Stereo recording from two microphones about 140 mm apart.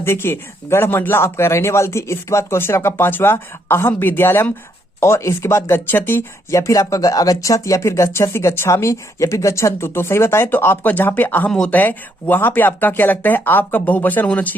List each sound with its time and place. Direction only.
0.0 s speech: 15° left (ahead or behind)